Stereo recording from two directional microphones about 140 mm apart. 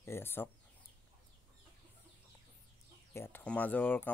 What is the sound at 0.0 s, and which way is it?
Bird, 15° left (ahead or behind).